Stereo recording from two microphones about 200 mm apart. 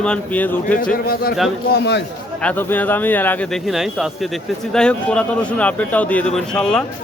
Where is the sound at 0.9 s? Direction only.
50° left (ahead or behind).